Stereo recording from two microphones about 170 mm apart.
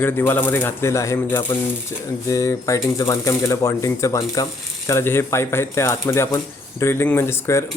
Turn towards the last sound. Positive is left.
turn(degrees=15)  # may be behind; listen again after turning